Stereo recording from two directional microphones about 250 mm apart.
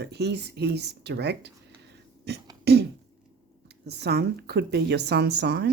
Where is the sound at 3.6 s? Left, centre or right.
Right.